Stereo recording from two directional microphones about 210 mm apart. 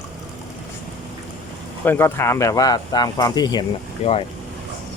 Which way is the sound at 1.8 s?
10° left (ahead or behind).